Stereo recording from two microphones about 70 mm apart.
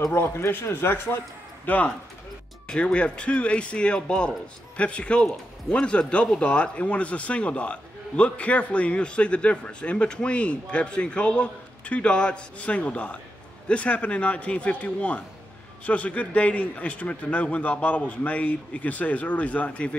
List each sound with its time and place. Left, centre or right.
0.1 s speech: left
1.7 s a man's voice: centre